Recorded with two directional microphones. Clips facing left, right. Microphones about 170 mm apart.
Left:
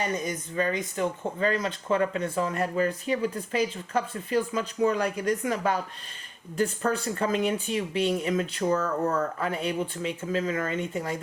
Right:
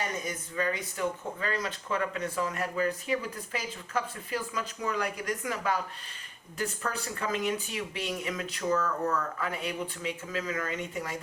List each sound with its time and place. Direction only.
0.5 s speech: 25° left (ahead or behind)